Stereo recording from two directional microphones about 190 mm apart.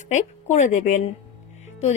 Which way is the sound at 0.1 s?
40° left (ahead or behind).